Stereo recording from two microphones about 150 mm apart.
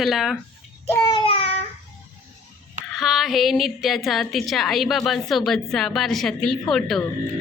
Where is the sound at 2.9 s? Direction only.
Centre (ahead or behind).